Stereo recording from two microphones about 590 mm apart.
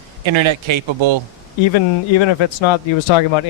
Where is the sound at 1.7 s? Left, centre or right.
Left.